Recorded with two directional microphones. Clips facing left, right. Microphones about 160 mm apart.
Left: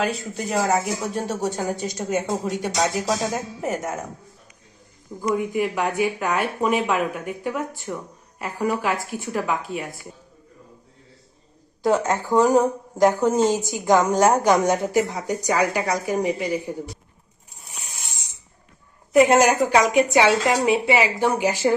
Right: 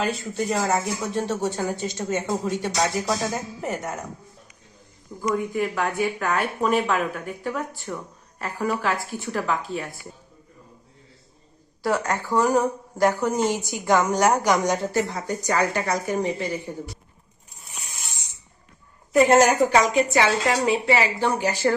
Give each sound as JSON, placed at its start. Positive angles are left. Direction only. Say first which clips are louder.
{"t": 0.5, "sound": "speech", "louder": "left 4 dB", "side_deg": 10}
{"t": 5.2, "sound": "speech", "louder": "left 2 dB", "side_deg": 10}
{"t": 11.8, "sound": "speech", "louder": "left 4 dB", "side_deg": 20}
{"t": 14.3, "sound": "speech", "louder": "left 3 dB", "side_deg": 30}
{"t": 14.7, "sound": "speech", "louder": "left 3 dB", "side_deg": 15}
{"t": 19.1, "sound": "speech", "louder": "left 1 dB", "side_deg": 15}